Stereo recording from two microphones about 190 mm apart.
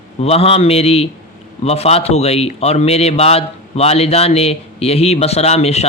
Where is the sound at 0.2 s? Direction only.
30° left (ahead or behind).